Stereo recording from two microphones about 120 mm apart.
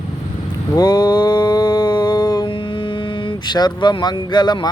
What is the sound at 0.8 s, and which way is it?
Mantra, 35° left (ahead or behind).